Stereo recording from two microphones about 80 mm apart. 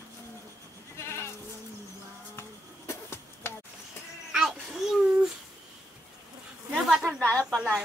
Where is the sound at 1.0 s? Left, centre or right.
Left.